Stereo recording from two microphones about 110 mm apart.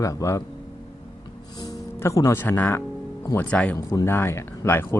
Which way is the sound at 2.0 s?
30° left (ahead or behind).